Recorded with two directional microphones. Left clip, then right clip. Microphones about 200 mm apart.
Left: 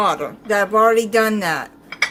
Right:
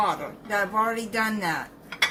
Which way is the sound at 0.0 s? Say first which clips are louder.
Left 7 dB; 45° left (ahead or behind).